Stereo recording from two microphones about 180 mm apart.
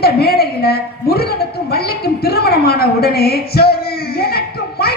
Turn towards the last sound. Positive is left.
turn(degrees=60)  # may be behind; listen again after turning